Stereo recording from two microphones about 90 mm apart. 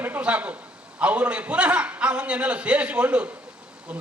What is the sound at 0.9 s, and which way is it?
A man's voice, 15° right (ahead or behind).